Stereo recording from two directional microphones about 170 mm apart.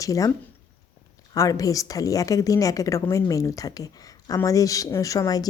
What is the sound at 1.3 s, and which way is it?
A woman's voice, 20° left (ahead or behind).